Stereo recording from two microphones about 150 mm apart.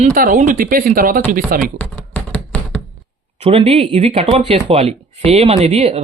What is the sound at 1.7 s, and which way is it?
Finger snapping, 10° left (ahead or behind).